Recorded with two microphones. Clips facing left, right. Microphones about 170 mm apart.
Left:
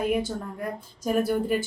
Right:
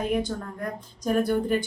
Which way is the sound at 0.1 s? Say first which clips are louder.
Even; 10° left (ahead or behind).